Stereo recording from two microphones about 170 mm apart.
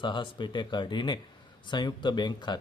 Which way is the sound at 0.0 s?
30° left (ahead or behind).